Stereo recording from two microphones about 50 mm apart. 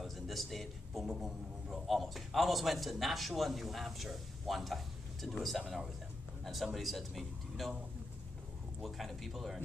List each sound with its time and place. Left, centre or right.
0.0 s a sound: centre
1.2 s a man's voice: centre
8.8 s a man's voice: centre